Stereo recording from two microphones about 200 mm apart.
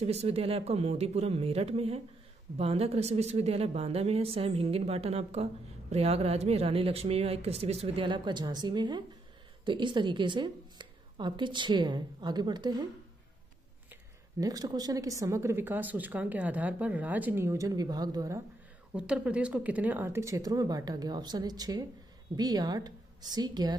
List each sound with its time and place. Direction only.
0.0 s a woman's voice: 30° right (ahead or behind)
14.4 s a woman's voice: 20° right (ahead or behind)
18.9 s a woman's voice: 5° right (ahead or behind)